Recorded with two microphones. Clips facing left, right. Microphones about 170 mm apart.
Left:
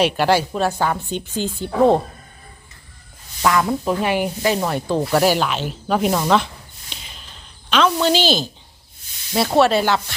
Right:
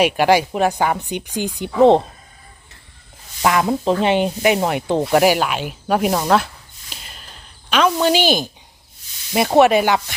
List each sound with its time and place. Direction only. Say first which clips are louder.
0.0 s rub: right 2 dB; 10° right (ahead or behind)
3.4 s speech: right 1 dB; 20° right (ahead or behind)
4.0 s rub: right 3 dB; 25° right (ahead or behind); by 6.5 s 5° right (ahead or behind)
6.9 s a sound: right 1 dB; 5° right (ahead or behind)
9.3 s rub: right 3 dB; 15° right (ahead or behind)